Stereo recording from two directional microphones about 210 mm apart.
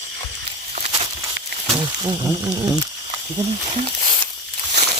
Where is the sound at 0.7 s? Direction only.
35° right (ahead or behind).